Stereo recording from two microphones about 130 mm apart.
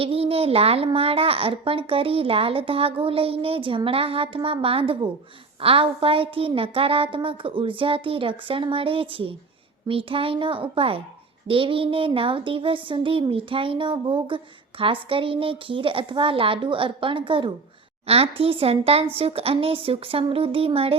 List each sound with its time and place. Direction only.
0.0 s a child's voice: 45° right (ahead or behind)